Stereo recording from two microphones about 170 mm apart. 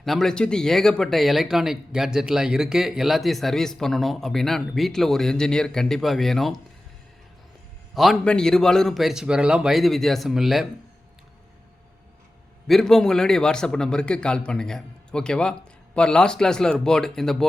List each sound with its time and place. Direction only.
0.0 s speech: centre (ahead or behind)
7.9 s speech: centre (ahead or behind)
12.6 s speech: centre (ahead or behind)